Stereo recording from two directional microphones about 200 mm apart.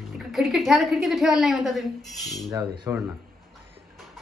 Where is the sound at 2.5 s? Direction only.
20° right (ahead or behind).